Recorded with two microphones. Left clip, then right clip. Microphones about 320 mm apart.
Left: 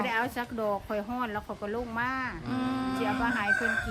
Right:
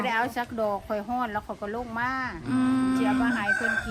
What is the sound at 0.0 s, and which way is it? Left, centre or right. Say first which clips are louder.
A woman's voice: right 3 dB; centre.